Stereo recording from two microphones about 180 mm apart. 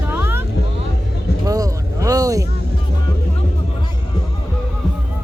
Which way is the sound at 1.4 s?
20° right (ahead or behind).